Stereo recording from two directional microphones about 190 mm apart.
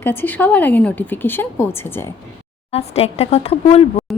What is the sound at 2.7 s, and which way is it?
Speech, 35° left (ahead or behind).